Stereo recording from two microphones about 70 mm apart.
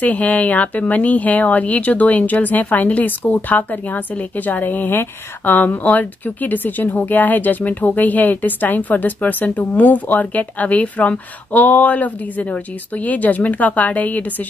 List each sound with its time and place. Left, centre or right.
0.0 s speech: left